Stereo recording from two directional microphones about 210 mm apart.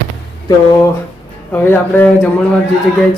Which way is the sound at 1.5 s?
10° left (ahead or behind).